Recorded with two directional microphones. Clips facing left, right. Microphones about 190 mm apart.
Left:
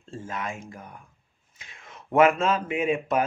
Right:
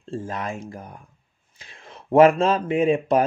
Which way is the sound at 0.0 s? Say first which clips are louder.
Right 5 dB; 35° right (ahead or behind).